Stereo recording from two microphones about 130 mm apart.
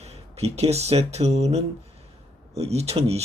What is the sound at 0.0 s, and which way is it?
Speech, 55° right (ahead or behind).